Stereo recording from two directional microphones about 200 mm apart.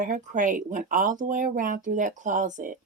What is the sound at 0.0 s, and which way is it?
A woman's voice, 40° right (ahead or behind).